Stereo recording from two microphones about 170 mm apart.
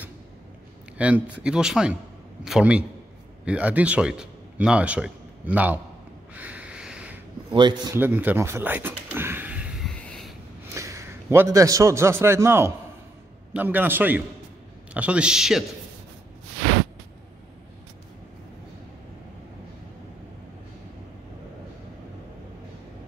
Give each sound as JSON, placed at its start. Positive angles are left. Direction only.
{"t": 0.9, "sound": "a man's voice", "side_deg": -10}
{"t": 6.3, "sound": "a sound", "side_deg": -10}
{"t": 7.5, "sound": "a man's voice", "side_deg": -25}
{"t": 7.9, "sound": "speech", "side_deg": -10}
{"t": 9.8, "sound": "a sound", "side_deg": 5}
{"t": 10.7, "sound": "a man's voice", "side_deg": -20}